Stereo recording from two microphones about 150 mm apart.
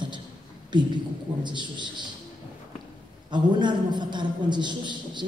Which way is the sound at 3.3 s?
30° right (ahead or behind).